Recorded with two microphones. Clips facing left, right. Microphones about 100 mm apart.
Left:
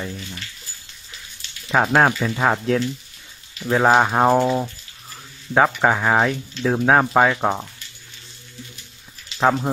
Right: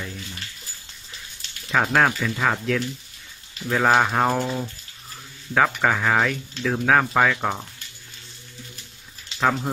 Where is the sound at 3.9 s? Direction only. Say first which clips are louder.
Left 4 dB; 20° left (ahead or behind).